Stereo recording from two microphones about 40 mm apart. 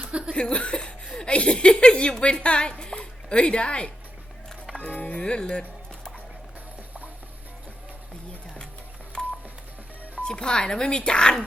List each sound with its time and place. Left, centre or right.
0.0 s laughter: right
0.3 s speech: left
4.9 s music: left
5.2 s speech: left
9.1 s telephone dialing: left
10.2 s speech: left